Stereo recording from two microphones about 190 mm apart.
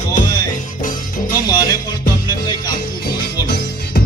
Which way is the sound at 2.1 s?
20° left (ahead or behind).